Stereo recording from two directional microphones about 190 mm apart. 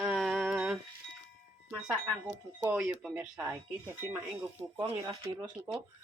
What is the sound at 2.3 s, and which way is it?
Speech, 5° right (ahead or behind).